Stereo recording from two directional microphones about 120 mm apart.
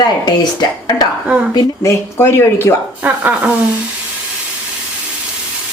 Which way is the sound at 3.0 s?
15° right (ahead or behind).